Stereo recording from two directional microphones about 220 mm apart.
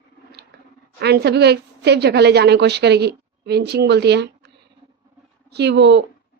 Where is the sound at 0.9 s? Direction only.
50° right (ahead or behind).